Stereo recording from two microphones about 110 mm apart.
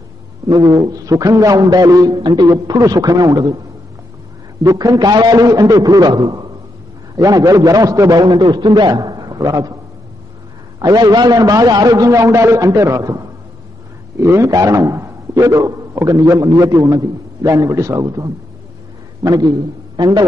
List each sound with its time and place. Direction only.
0.5 s a man's voice: 40° right (ahead or behind)
4.6 s a man's voice: 35° right (ahead or behind)
10.8 s a man's voice: 35° right (ahead or behind)